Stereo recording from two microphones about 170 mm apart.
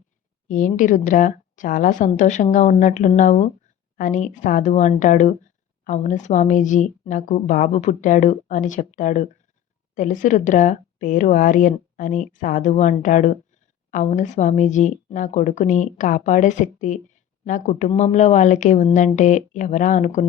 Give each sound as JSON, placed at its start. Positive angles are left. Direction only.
{"t": 0.4, "sound": "speech", "side_deg": 50}